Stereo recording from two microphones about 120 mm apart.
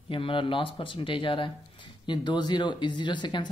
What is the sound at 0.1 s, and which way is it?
Speech, 45° left (ahead or behind).